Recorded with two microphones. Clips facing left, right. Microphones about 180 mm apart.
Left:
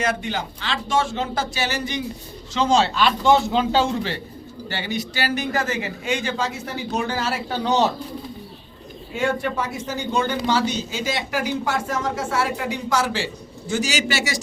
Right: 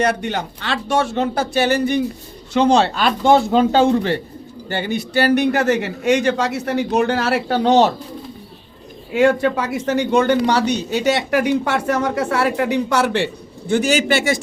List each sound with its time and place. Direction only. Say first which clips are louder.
0.2 s a man's voice: right 4 dB; 65° right (ahead or behind)
9.1 s a man's voice: right 8 dB; 85° right; by 14.4 s 55° right (ahead or behind)